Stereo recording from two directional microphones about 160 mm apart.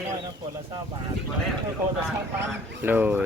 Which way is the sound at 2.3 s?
15° right (ahead or behind).